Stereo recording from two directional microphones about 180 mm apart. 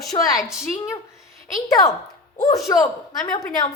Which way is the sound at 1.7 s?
20° left (ahead or behind).